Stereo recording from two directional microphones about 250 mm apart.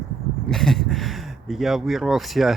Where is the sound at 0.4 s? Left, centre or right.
Centre.